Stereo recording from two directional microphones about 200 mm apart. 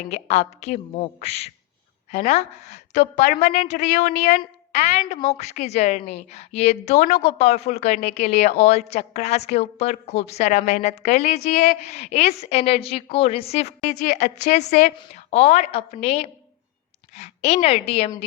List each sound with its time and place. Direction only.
0.1 s a woman's voice: 35° left (ahead or behind)